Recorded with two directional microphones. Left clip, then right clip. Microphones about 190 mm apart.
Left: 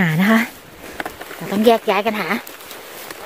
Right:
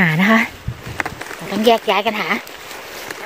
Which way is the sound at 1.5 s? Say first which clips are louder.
Even; 30° left (ahead or behind).